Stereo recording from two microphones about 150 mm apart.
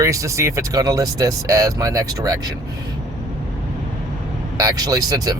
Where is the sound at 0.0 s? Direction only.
20° right (ahead or behind).